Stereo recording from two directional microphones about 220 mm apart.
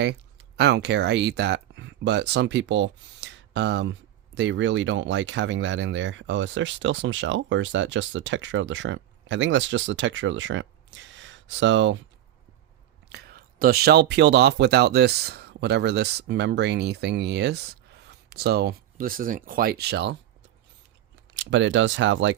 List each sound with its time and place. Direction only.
0.0 s speech: 50° right (ahead or behind)
13.1 s speech: 45° right (ahead or behind)
21.3 s speech: 60° right (ahead or behind)